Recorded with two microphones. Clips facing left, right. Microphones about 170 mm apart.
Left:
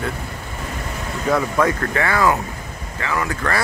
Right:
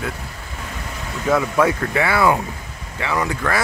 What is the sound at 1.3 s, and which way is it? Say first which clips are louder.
Speech: right 1 dB; 5° right (ahead or behind).